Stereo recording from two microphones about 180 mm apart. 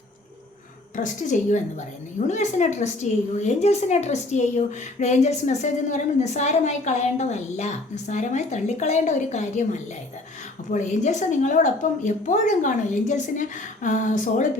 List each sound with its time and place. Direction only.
0.9 s a woman's voice: 45° left (ahead or behind)